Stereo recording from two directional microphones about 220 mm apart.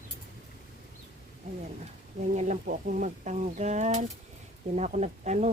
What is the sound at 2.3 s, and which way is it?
Speech, 35° right (ahead or behind).